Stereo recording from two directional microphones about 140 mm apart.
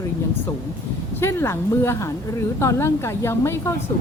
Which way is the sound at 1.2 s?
20° left (ahead or behind).